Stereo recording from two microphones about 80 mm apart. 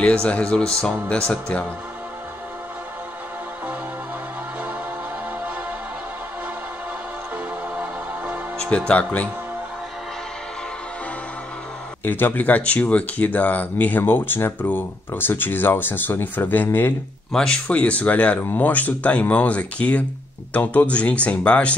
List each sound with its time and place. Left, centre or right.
0.0 s speech: centre
7.7 s music: centre
8.5 s speech: centre
12.0 s speech: left
17.3 s speech: centre